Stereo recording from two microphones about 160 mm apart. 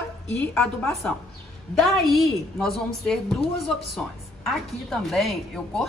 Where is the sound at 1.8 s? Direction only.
Centre (ahead or behind).